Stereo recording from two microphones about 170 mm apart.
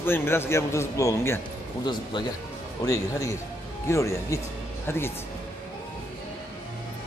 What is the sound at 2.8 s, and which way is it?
A man's voice, 20° left (ahead or behind).